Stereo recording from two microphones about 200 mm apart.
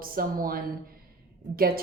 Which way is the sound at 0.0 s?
45° right (ahead or behind).